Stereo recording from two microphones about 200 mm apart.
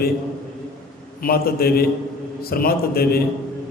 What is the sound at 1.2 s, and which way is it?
A man's voice, 50° left (ahead or behind).